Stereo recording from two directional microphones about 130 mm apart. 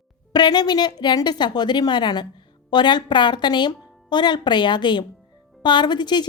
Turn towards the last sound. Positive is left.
turn(degrees=35)  # may be behind; listen again after turning